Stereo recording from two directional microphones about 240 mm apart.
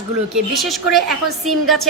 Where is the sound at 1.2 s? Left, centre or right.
Right.